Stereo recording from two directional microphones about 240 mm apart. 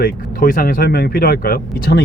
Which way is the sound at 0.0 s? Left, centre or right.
Left.